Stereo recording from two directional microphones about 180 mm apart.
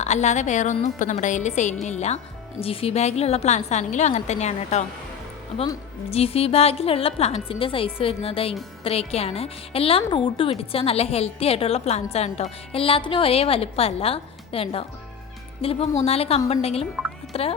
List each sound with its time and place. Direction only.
0.0 s a woman's voice: 40° left (ahead or behind)
6.1 s a woman's voice: 35° left (ahead or behind)